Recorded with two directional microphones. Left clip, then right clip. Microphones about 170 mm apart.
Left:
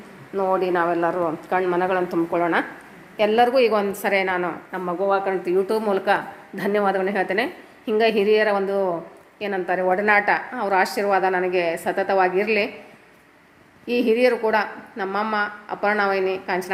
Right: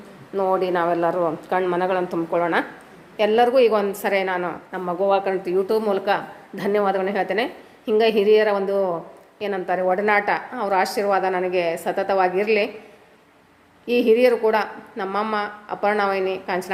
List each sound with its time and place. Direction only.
0.3 s a woman's voice: 5° right (ahead or behind)
4.9 s speech: 20° right (ahead or behind)
5.5 s a woman's voice: centre (ahead or behind)
13.8 s a woman's voice: 5° right (ahead or behind)